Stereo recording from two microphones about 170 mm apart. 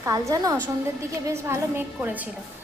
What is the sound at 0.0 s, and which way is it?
A woman's voice, 20° right (ahead or behind).